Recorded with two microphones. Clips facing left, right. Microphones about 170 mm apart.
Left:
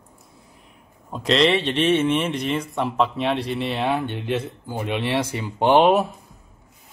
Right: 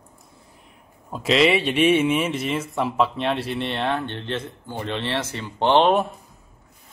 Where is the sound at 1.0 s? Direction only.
5° right (ahead or behind).